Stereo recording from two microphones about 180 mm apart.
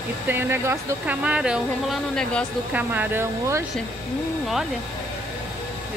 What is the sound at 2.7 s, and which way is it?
Speech, 10° right (ahead or behind).